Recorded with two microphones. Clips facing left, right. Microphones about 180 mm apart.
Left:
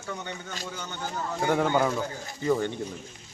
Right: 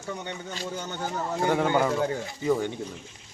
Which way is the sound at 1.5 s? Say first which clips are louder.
Even; 5° right (ahead or behind).